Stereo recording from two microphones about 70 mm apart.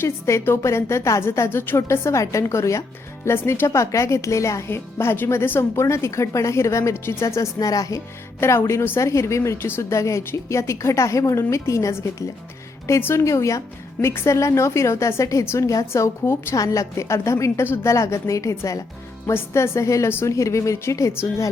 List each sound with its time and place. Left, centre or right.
0.0 s a woman's voice: left
4.7 s a woman's voice: left
7.6 s speech: left
8.4 s a woman's voice: left
9.9 s a woman's voice: left
16.2 s a woman's voice: left
16.6 s a woman's voice: left
17.6 s a woman's voice: left
17.9 s a woman's voice: left
19.3 s a woman's voice: left
20.1 s a woman's voice: left
20.3 s a woman's voice: left